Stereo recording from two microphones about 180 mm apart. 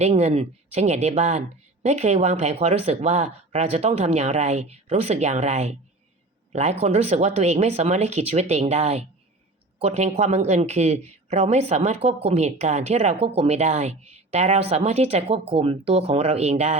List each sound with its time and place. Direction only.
0.0 s speech: 35° right (ahead or behind)